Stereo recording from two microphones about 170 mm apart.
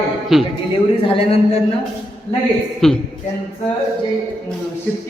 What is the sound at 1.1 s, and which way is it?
Speech, 35° left (ahead or behind).